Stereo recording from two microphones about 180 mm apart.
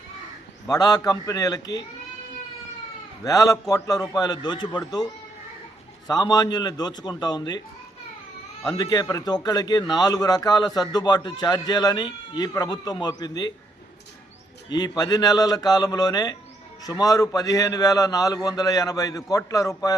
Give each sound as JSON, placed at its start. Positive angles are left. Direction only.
{"t": 0.7, "sound": "a man's voice", "side_deg": 20}
{"t": 3.2, "sound": "a man's voice", "side_deg": 20}
{"t": 8.7, "sound": "a man's voice", "side_deg": 25}
{"t": 14.7, "sound": "a man's voice", "side_deg": 20}